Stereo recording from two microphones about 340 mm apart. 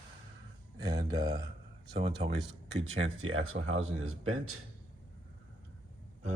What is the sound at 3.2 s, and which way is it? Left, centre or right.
Speech, right.